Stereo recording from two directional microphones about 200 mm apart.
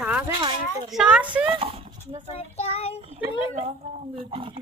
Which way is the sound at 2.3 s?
30° left (ahead or behind).